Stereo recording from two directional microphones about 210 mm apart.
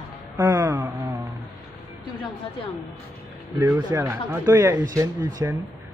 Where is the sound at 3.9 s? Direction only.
10° right (ahead or behind).